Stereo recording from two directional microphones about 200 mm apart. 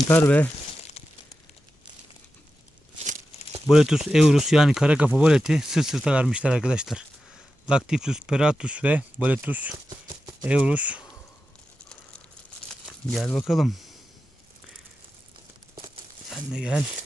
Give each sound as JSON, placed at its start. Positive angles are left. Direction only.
{"t": 0.1, "sound": "speech", "side_deg": 10}
{"t": 3.0, "sound": "crumpling", "side_deg": -35}
{"t": 3.7, "sound": "speech", "side_deg": -5}
{"t": 12.8, "sound": "speech", "side_deg": 0}
{"t": 16.3, "sound": "speech", "side_deg": -5}